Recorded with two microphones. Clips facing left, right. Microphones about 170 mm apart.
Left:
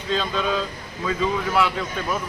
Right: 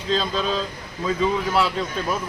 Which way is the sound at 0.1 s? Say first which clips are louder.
Right 1 dB; 35° right (ahead or behind).